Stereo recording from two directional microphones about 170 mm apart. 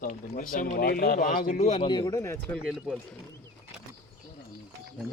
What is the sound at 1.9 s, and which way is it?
Speech, 25° left (ahead or behind).